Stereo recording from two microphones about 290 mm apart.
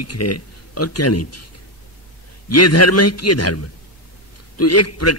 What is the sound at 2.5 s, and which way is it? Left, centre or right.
A man's voice, left.